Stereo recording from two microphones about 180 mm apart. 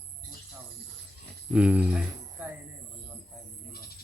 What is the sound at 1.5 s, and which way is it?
Speech, 5° right (ahead or behind).